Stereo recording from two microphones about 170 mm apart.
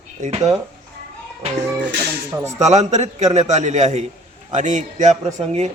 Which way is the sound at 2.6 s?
40° right (ahead or behind).